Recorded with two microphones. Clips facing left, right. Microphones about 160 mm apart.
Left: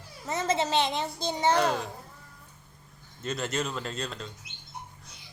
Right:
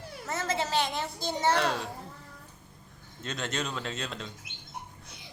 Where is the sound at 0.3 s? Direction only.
20° left (ahead or behind).